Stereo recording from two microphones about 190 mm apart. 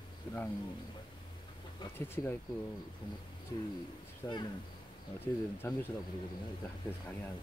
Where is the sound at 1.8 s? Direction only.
10° left (ahead or behind).